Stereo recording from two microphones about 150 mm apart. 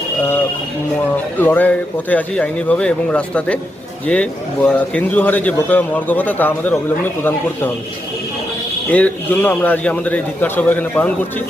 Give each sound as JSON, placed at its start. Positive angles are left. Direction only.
{"t": 1.1, "sound": "a man's voice", "side_deg": 10}
{"t": 8.9, "sound": "a man's voice", "side_deg": 10}